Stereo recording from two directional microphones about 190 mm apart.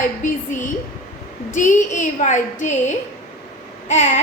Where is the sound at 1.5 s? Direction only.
40° left (ahead or behind).